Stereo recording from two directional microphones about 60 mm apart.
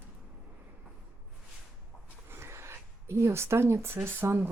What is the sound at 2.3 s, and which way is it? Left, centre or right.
Speech, right.